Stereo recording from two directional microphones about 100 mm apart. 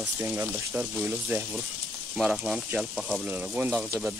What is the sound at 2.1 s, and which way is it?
Speech, 5° right (ahead or behind).